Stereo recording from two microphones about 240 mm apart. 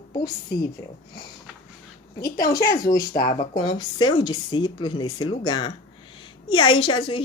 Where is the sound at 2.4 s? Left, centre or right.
Centre.